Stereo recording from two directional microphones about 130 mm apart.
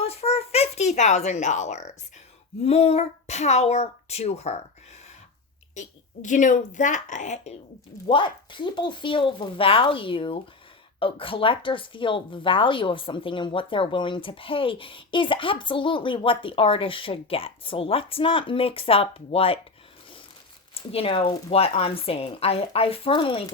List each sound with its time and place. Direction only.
0.0 s a sound: 50° left (ahead or behind)
2.6 s a child's voice: 50° left (ahead or behind)
5.7 s a woman's voice: 70° left (ahead or behind)
8.0 s speech: 40° left (ahead or behind)
20.7 s a woman's voice: 45° left (ahead or behind)